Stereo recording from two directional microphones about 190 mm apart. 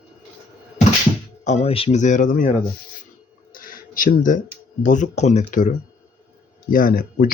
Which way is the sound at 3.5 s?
50° left (ahead or behind).